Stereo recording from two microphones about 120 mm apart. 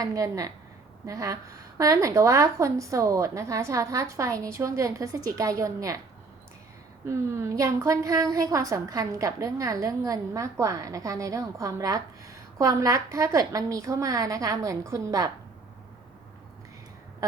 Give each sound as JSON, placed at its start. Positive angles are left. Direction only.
{"t": 0.0, "sound": "a woman's voice", "side_deg": -30}
{"t": 7.1, "sound": "a woman's voice", "side_deg": -25}